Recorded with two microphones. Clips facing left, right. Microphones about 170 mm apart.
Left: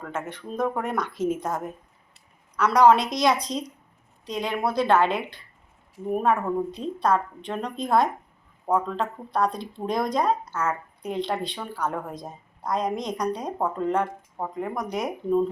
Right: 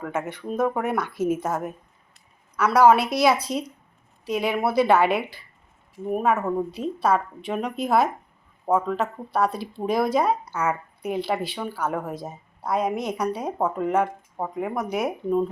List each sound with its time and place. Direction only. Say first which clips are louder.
0.0 s speech: right 4 dB; 10° right (ahead or behind)